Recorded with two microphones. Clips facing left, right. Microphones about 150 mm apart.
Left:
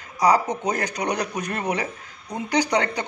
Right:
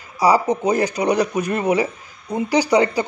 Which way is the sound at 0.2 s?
5° right (ahead or behind).